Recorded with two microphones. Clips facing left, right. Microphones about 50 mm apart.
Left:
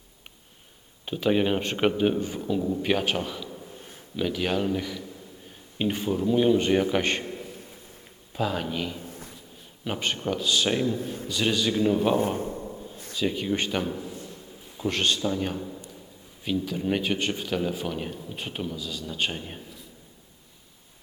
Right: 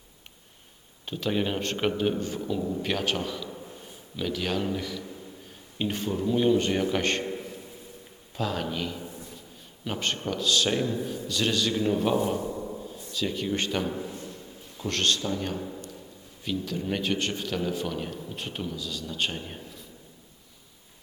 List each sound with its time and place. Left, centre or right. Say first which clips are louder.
1.0 s a man's voice: left 4 dB; centre
8.4 s a man's voice: left 2 dB; centre
12.1 s a man's voice: left 1 dB; left
12.6 s a sound: right 2 dB; centre
13.1 s a man's voice: left 2 dB; centre
13.8 s a sound: even; centre
14.8 s a man's voice: left 1 dB; centre